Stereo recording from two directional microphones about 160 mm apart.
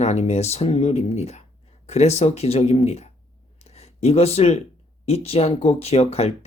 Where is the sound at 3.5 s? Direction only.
40° left (ahead or behind).